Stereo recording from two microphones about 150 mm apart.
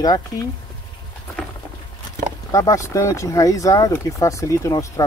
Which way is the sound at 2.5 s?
20° left (ahead or behind).